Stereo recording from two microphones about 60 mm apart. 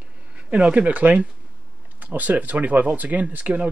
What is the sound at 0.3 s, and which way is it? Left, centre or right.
Speech, right.